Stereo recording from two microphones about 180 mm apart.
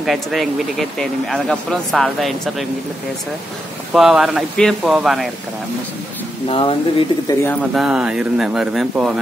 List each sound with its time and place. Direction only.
0.0 s speech: centre (ahead or behind)
3.9 s speech: centre (ahead or behind)
6.5 s speech: 25° left (ahead or behind)
7.7 s speech: 5° right (ahead or behind)